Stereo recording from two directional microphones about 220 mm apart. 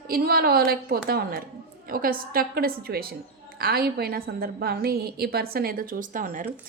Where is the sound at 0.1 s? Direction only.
45° right (ahead or behind).